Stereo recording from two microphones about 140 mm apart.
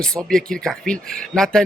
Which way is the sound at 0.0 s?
5° left (ahead or behind).